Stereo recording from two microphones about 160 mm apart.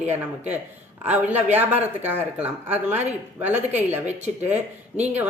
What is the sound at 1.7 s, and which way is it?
Speech, 45° right (ahead or behind).